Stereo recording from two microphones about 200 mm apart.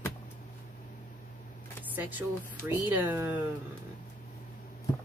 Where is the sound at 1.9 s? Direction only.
10° right (ahead or behind).